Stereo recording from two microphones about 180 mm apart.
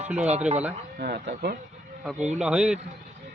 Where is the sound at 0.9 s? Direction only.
55° right (ahead or behind).